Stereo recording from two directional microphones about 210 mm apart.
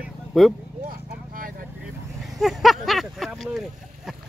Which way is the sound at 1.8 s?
Centre (ahead or behind).